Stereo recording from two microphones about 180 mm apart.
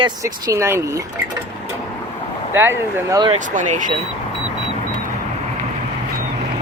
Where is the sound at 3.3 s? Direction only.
45° right (ahead or behind).